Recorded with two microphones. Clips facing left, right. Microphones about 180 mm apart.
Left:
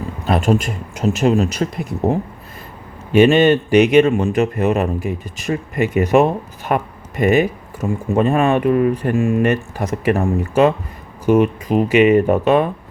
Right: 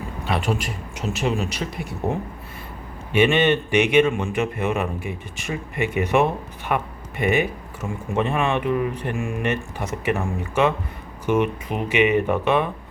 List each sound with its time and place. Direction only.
0.3 s speech: 45° left (ahead or behind)